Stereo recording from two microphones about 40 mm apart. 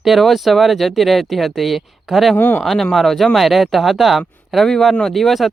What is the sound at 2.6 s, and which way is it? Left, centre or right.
Speech, centre.